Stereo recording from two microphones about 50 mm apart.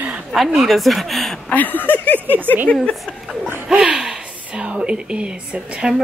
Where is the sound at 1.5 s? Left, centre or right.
Left.